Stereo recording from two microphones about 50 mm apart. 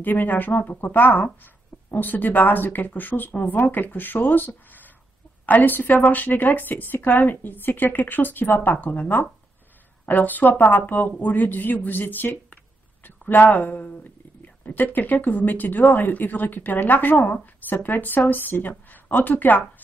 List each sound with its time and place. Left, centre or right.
0.0 s speech: left
8.8 s speech: left